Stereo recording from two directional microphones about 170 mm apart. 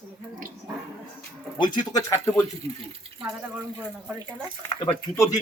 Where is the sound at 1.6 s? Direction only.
25° left (ahead or behind).